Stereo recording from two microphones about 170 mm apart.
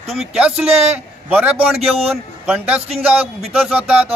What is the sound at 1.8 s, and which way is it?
Speech, 35° right (ahead or behind).